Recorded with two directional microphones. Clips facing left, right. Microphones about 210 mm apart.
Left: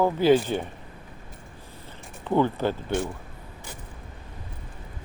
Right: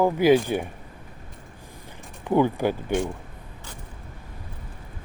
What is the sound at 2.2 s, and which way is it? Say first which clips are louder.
Speech: right 2 dB; 10° right (ahead or behind).